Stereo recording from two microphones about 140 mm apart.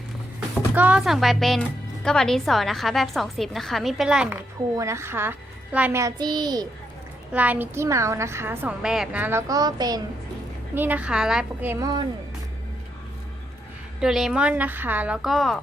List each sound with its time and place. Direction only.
0.7 s a woman's voice: 10° right (ahead or behind)
4.8 s a woman's voice: 20° right (ahead or behind)
6.0 s a woman's voice: 25° right (ahead or behind)
7.3 s a woman's voice: 10° right (ahead or behind)
8.8 s a woman's voice: 5° right (ahead or behind)
9.5 s a woman's voice: 30° right (ahead or behind)
10.8 s a woman's voice: 10° right (ahead or behind)
11.7 s a woman's voice: 25° right (ahead or behind)
14.0 s a woman's voice: 5° right (ahead or behind)